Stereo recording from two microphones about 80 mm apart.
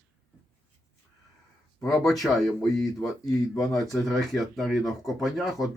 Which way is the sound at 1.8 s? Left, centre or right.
Left.